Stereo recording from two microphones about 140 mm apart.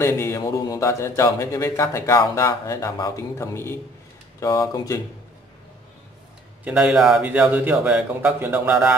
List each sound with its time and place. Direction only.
0.0 s speech: 20° left (ahead or behind)
6.6 s speech: 5° right (ahead or behind)